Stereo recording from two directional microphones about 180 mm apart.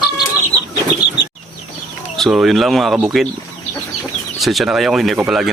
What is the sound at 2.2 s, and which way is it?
Speech, centre (ahead or behind).